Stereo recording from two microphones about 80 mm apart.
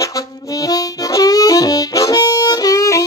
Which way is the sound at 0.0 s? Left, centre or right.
Left.